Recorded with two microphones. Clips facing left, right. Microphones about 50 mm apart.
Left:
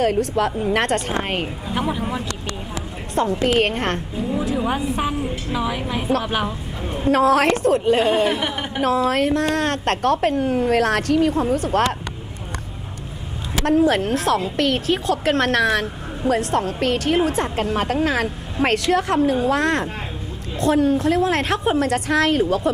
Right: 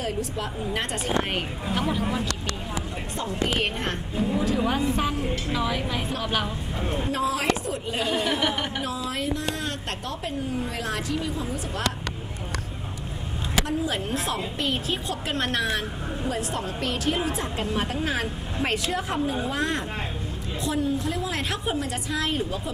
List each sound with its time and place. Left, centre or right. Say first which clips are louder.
0.0 s a woman's voice: left 11 dB; left
1.2 s speech: left 5 dB; left
1.7 s speech: left 2 dB; centre
3.2 s a woman's voice: left 9 dB; left
4.6 s a woman's voice: left 3 dB; centre
6.8 s a woman's voice: even; centre
7.1 s a woman's voice: left 11 dB; left
8.0 s speech: left 7 dB; left
8.5 s a woman's voice: left 2 dB; centre
8.8 s a woman's voice: left 11 dB; left
13.7 s a woman's voice: left 10 dB; left